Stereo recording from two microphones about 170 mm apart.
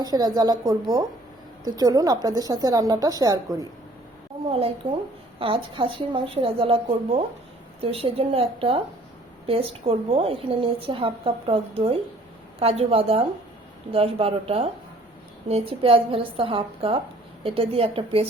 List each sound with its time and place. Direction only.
0.0 s a woman's voice: 25° right (ahead or behind)
4.8 s a woman's voice: 10° right (ahead or behind)
5.4 s a woman's voice: 30° right (ahead or behind)